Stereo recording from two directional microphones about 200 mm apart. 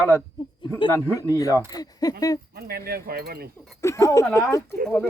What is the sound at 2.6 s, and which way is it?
Speech, 50° right (ahead or behind).